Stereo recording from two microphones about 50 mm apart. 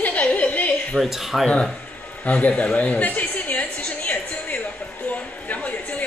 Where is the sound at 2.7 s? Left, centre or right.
Left.